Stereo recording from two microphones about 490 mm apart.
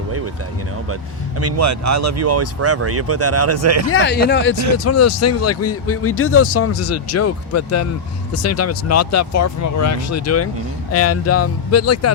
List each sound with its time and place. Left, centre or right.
1.4 s speech: right
3.8 s speech: left
4.5 s speech: right
4.8 s speech: left